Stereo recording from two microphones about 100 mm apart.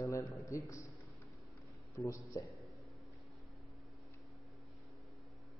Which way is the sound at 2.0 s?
30° left (ahead or behind).